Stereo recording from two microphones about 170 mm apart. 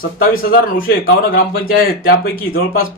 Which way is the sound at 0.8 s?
60° left (ahead or behind).